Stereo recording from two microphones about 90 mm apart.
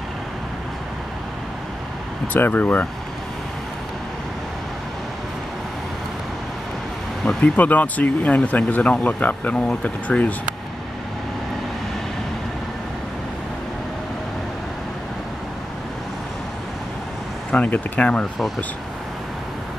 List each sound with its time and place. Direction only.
2.3 s speech: 20° left (ahead or behind)
7.4 s speech: 20° left (ahead or behind)
17.5 s speech: 15° left (ahead or behind)